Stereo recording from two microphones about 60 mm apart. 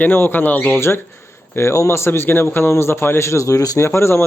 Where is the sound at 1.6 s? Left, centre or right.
Left.